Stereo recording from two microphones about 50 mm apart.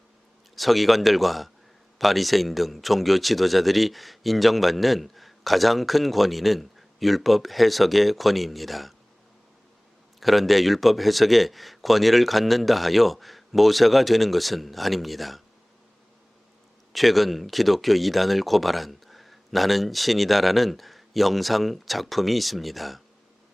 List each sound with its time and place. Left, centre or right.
0.5 s speech: centre
10.2 s speech: centre
16.9 s speech: centre